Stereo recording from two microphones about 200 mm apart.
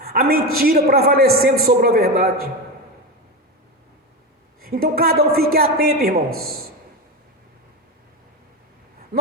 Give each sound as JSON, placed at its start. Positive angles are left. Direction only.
{"t": 0.0, "sound": "a sound", "side_deg": -50}
{"t": 0.5, "sound": "a woman's voice", "side_deg": -50}
{"t": 4.6, "sound": "a woman's voice", "side_deg": -50}